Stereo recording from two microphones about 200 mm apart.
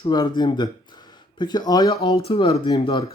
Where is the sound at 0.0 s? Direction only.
20° left (ahead or behind).